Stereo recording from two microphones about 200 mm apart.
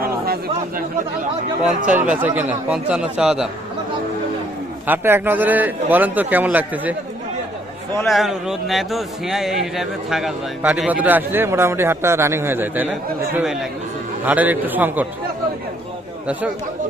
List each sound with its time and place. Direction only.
0.0 s chatter: 50° right (ahead or behind)
1.9 s speech: 10° right (ahead or behind)
4.9 s speech: 10° right (ahead or behind)
8.0 s speech: centre (ahead or behind)